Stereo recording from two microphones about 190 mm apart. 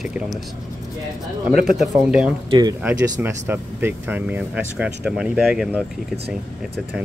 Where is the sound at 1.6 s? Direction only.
5° right (ahead or behind).